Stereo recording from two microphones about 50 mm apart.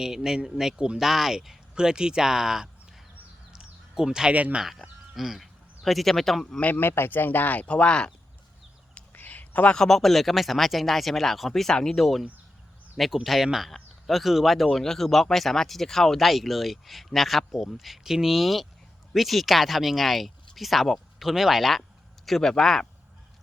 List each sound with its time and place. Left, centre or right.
0.0 s speech: centre
3.5 s a sound: centre
4.3 s speech: right
5.1 s speech: centre
6.7 s speech: left; by 8.1 s centre
9.1 s a sound: left
9.6 s speech: centre
13.2 s speech: centre